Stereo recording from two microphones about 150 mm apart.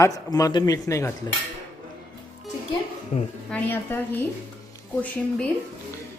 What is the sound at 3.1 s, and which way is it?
Speech, 45° left (ahead or behind).